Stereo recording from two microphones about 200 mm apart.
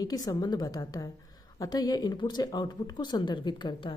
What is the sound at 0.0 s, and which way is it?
A woman's voice, 15° left (ahead or behind).